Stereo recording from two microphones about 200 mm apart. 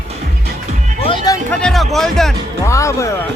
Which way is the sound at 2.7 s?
15° left (ahead or behind).